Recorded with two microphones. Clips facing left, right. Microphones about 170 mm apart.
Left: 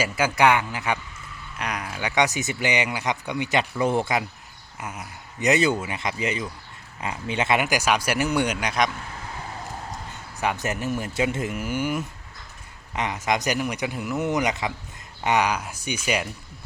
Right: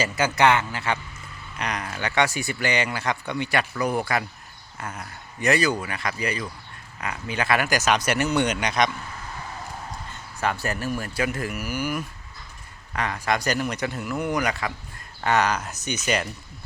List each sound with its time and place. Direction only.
0.0 s speech: 10° left (ahead or behind)
10.4 s speech: 15° left (ahead or behind)